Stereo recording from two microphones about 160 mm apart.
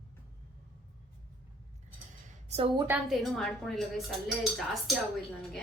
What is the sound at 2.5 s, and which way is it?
Speech, 35° right (ahead or behind).